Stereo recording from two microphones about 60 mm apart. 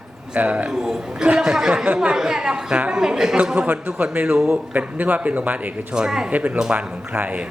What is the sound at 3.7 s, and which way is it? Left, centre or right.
Speech, right.